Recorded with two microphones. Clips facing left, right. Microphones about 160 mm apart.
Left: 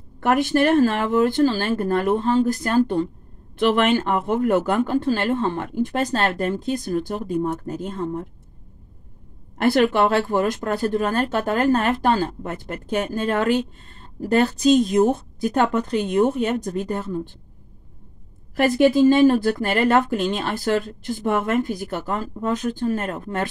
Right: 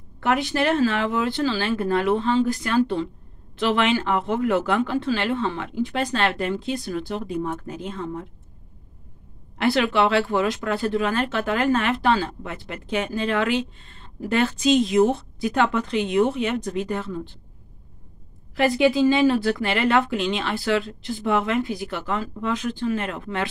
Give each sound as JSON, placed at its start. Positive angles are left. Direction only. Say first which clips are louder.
{"t": 0.2, "sound": "speech", "louder": "left 4 dB", "side_deg": 50}
{"t": 9.6, "sound": "speech", "louder": "left 3 dB", "side_deg": 45}
{"t": 18.5, "sound": "speech", "louder": "left 2 dB", "side_deg": 45}